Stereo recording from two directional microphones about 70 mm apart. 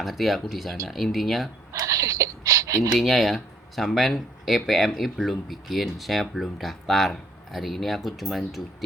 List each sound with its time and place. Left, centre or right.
0.0 s speech: centre
1.7 s speech: right
2.9 s speech: centre